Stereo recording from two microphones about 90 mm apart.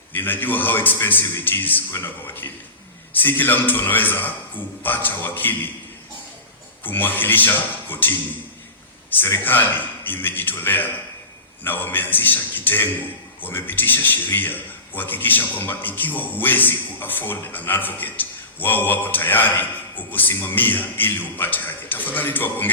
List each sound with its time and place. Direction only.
0.1 s a man's voice: 20° left (ahead or behind)
6.8 s a man's voice: 20° left (ahead or behind)